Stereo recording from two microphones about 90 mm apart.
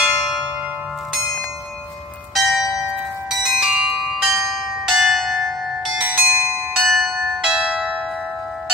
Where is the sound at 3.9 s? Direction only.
5° right (ahead or behind).